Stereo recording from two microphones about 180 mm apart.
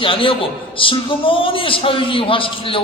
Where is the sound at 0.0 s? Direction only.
30° left (ahead or behind).